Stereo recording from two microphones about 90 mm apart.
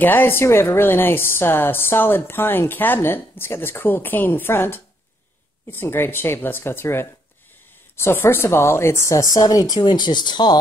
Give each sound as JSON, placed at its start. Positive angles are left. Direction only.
{"t": 0.0, "sound": "speech", "side_deg": 20}
{"t": 9.8, "sound": "speech", "side_deg": 55}